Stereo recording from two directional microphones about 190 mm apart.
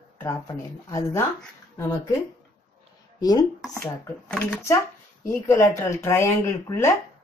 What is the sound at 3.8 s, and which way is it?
A woman's voice, 10° left (ahead or behind).